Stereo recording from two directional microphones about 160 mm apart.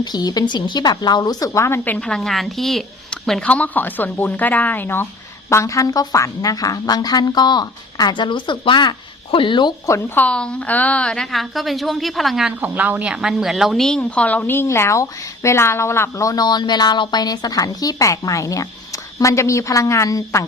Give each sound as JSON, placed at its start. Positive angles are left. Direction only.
{"t": 0.0, "sound": "a woman's voice", "side_deg": 25}
{"t": 10.2, "sound": "a woman's voice", "side_deg": 5}